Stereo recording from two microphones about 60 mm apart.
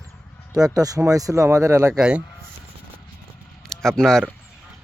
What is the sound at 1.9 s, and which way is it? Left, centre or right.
Speech, centre.